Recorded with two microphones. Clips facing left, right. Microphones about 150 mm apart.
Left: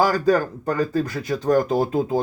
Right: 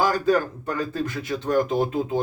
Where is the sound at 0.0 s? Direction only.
40° left (ahead or behind).